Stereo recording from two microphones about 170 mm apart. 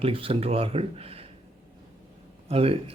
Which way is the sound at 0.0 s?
35° right (ahead or behind).